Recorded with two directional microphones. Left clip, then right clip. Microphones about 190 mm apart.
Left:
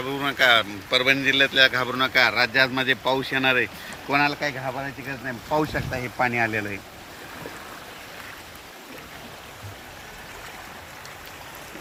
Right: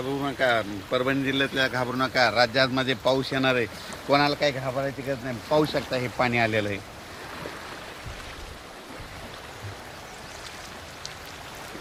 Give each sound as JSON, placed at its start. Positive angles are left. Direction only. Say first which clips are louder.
{"t": 0.2, "sound": "speech", "louder": "left 6 dB", "side_deg": -20}
{"t": 0.9, "sound": "speech", "louder": "left 6 dB", "side_deg": -35}
{"t": 2.0, "sound": "speech", "louder": "left 1 dB", "side_deg": -70}